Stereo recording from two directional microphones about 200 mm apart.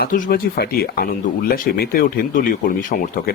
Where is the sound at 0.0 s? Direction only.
45° left (ahead or behind).